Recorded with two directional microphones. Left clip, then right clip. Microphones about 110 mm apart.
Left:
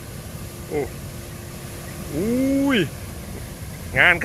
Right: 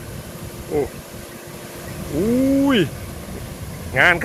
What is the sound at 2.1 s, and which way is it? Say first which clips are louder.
Speech: right 4 dB; centre (ahead or behind).